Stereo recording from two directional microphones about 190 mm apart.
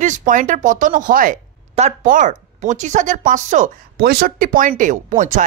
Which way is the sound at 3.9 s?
50° right (ahead or behind).